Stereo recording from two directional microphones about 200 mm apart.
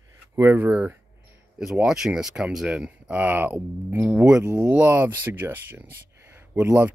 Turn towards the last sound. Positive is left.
turn(degrees=-10)  # may be behind; listen again after turning